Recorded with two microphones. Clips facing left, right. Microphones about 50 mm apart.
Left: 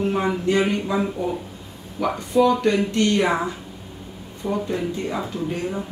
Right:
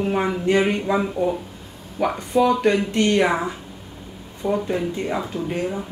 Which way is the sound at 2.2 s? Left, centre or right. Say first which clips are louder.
Left 1 dB; right.